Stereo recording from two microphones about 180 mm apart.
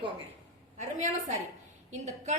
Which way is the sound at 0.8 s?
40° right (ahead or behind).